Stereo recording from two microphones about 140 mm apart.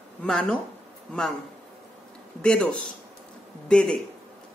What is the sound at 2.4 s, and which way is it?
A man's voice, 5° left (ahead or behind).